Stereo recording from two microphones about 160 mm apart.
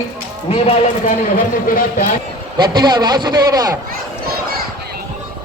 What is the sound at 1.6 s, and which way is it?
Speech, 60° left (ahead or behind).